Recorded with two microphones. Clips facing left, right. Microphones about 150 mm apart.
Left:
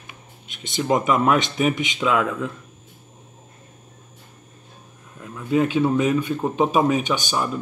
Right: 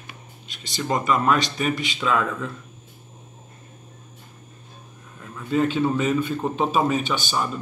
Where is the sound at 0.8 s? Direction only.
10° left (ahead or behind).